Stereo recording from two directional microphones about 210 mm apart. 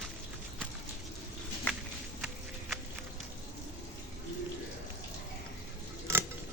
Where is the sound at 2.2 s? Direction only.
Centre (ahead or behind).